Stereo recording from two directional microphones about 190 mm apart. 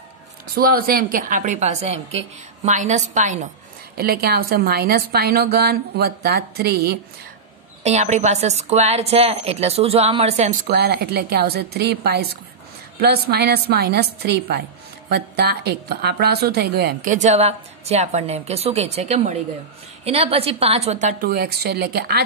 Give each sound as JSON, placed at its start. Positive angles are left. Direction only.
{"t": 0.6, "sound": "speech", "side_deg": -50}
{"t": 3.9, "sound": "a woman's voice", "side_deg": -55}
{"t": 7.8, "sound": "speech", "side_deg": -35}
{"t": 10.7, "sound": "a woman's voice", "side_deg": -55}
{"t": 17.1, "sound": "speech", "side_deg": -35}
{"t": 21.2, "sound": "a woman's voice", "side_deg": -55}